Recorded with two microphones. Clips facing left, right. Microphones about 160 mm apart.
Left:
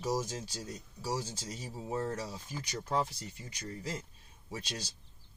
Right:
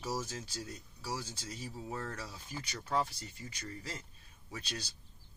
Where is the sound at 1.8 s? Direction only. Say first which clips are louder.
Left 8 dB; 25° left (ahead or behind).